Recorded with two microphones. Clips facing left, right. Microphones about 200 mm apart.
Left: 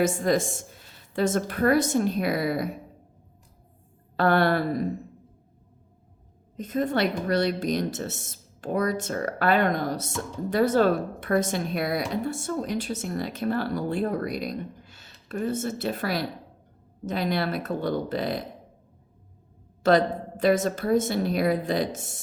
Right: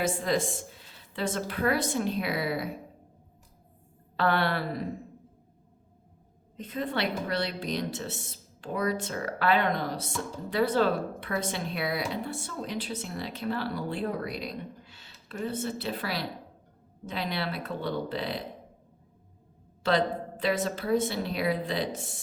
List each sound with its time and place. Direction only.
0.0 s speech: 45° left (ahead or behind)
4.2 s speech: 45° left (ahead or behind)
6.6 s speech: 45° left (ahead or behind)
19.8 s speech: 45° left (ahead or behind)